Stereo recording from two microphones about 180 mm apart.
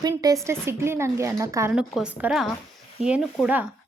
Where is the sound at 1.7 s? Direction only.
5° right (ahead or behind).